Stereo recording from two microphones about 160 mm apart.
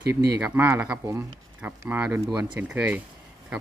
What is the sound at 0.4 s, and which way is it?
Speech, 15° right (ahead or behind).